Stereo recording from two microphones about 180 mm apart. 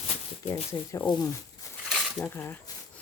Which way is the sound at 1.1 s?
25° left (ahead or behind).